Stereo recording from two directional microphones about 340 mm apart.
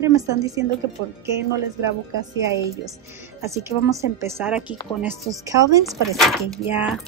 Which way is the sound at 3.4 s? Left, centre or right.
Centre.